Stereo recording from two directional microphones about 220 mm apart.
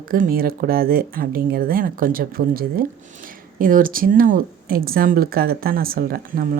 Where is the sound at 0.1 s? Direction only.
40° right (ahead or behind).